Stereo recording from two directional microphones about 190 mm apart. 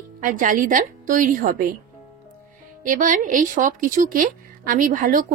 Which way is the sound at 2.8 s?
45° right (ahead or behind).